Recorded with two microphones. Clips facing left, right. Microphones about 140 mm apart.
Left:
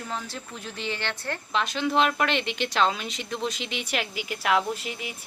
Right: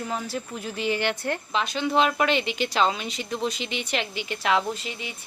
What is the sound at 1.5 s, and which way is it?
A woman's voice, centre (ahead or behind).